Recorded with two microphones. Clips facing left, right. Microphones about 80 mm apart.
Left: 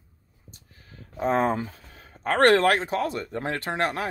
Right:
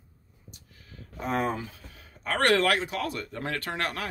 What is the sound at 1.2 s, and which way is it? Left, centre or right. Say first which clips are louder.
Speech: left 6 dB; left.